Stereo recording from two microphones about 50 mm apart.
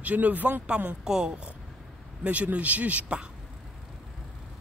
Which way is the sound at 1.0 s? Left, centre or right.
Centre.